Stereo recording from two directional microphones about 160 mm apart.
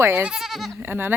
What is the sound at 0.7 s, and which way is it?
Speech, 15° right (ahead or behind).